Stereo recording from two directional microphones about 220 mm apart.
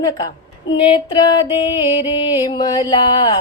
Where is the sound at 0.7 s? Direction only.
20° left (ahead or behind).